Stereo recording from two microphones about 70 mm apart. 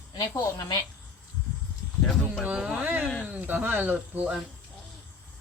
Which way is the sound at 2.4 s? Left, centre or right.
Centre.